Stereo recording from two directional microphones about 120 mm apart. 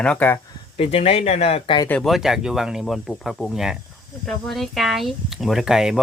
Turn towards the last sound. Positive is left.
turn(degrees=-5)  # may be behind; listen again after turning